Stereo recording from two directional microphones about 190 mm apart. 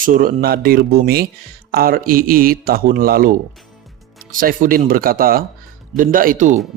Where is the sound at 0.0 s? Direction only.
45° right (ahead or behind).